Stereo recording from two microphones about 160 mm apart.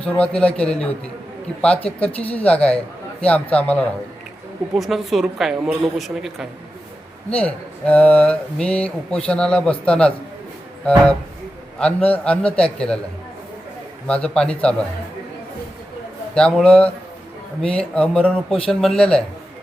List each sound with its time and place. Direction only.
0.0 s speech: 5° left (ahead or behind)
1.8 s speech: 35° left (ahead or behind)
2.3 s a woman's voice: 10° left (ahead or behind)
7.3 s speech: 10° left (ahead or behind)
14.1 s a woman's voice: 5° left (ahead or behind)
16.3 s a woman's voice: 5° left (ahead or behind)